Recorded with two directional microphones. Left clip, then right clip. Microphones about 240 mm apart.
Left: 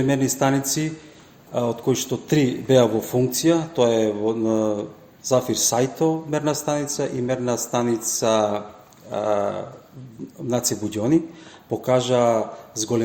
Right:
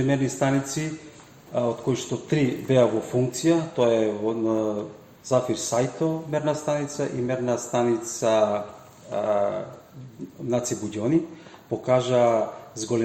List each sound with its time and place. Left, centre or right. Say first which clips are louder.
0.1 s a man's voice: left 3 dB; left